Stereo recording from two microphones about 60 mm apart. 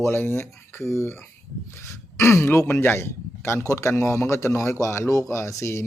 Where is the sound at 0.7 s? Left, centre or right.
Left.